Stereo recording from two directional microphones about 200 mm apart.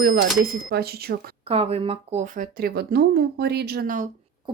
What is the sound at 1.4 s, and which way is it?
Speech, 30° right (ahead or behind).